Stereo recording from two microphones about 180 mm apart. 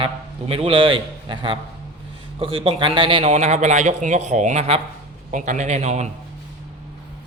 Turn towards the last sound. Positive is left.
turn(degrees=-40)  # may be behind; listen again after turning